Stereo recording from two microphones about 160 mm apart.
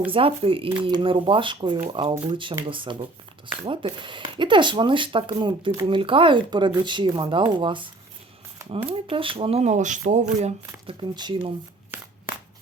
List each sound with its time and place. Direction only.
0.1 s speech: 35° right (ahead or behind)
8.9 s speech: 35° right (ahead or behind)
11.1 s speech: 30° right (ahead or behind)